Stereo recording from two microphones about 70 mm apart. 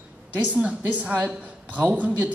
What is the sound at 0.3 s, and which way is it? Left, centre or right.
A woman's voice, centre.